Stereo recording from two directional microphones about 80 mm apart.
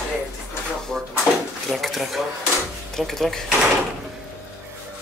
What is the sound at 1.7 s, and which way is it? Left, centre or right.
Speech, centre.